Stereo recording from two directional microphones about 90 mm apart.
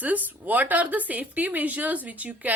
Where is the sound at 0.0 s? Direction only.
20° right (ahead or behind).